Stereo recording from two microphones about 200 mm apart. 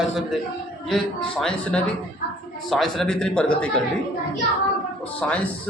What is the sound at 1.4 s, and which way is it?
A man's voice, 5° left (ahead or behind).